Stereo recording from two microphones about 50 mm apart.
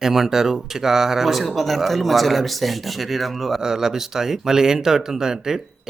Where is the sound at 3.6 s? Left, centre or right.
Centre.